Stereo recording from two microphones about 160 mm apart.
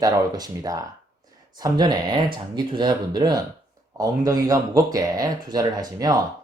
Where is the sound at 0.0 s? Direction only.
25° right (ahead or behind).